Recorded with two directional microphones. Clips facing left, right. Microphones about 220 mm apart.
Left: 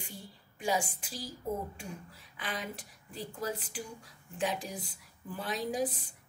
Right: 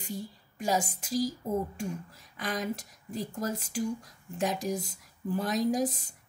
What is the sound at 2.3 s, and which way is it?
Speech, 45° right (ahead or behind).